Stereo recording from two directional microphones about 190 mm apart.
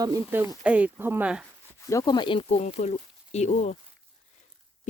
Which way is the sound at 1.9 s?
20° left (ahead or behind).